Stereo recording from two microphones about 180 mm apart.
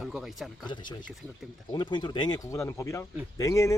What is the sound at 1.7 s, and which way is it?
Speech, 25° left (ahead or behind).